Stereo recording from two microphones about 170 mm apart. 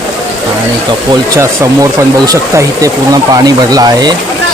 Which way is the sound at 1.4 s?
20° right (ahead or behind).